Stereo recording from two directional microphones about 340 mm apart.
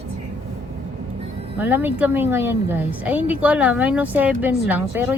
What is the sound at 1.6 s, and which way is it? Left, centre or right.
A woman's voice, centre.